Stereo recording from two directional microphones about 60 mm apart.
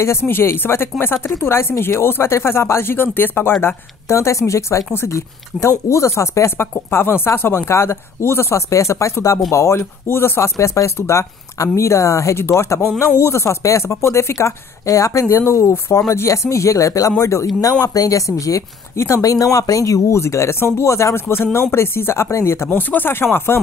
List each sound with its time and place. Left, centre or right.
0.0 s speech: left
3.6 s speech: left
10.0 s speech: left
15.9 s speech: left
17.6 s speech: left
18.9 s speech: left
19.2 s speech: left
22.7 s speech: left